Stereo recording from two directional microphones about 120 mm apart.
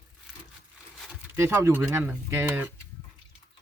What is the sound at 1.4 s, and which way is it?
Speech, 20° right (ahead or behind).